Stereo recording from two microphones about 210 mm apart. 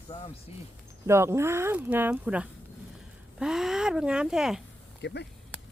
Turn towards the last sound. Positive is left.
turn(degrees=55)  # may be behind; listen again after turning